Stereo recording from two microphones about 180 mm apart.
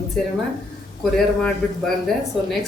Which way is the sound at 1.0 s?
Centre (ahead or behind).